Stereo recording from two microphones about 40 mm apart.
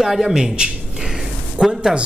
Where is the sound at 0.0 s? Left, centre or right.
Centre.